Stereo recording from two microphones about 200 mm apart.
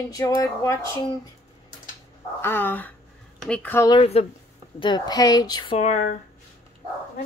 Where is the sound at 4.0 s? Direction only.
30° left (ahead or behind).